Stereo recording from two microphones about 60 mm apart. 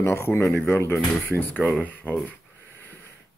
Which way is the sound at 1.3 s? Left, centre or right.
Left.